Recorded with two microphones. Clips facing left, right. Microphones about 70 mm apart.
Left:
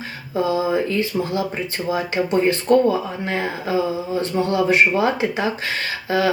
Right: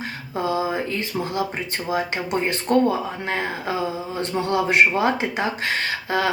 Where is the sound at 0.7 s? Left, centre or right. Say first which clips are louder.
Left 5 dB; right.